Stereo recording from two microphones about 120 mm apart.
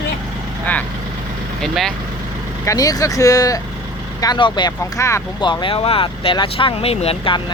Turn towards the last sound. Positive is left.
turn(degrees=45)  # may be behind; listen again after turning